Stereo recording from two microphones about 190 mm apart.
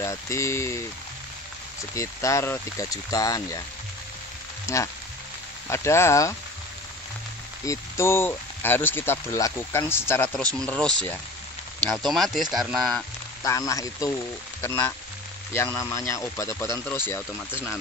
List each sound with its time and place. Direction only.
0.0 s speech: 15° left (ahead or behind)
2.0 s speech: 15° left (ahead or behind)
4.7 s speech: 15° left (ahead or behind)
7.6 s speech: 15° left (ahead or behind); by 13.0 s centre (ahead or behind)
13.4 s speech: 15° left (ahead or behind)